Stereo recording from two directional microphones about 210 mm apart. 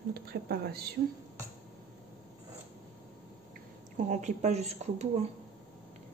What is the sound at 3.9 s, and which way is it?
Speech, 35° right (ahead or behind).